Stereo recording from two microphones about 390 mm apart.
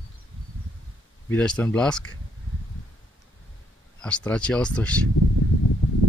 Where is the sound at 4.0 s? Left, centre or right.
Centre.